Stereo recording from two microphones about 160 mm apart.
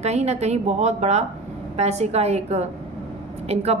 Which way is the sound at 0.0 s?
45° right (ahead or behind).